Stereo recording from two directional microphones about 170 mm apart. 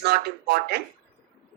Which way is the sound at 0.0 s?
70° right (ahead or behind).